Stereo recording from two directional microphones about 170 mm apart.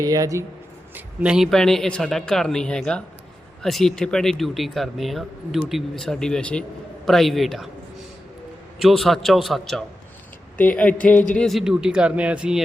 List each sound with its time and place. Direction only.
0.0 s speech: 20° right (ahead or behind)
0.9 s speech: 5° right (ahead or behind)
8.8 s speech: centre (ahead or behind)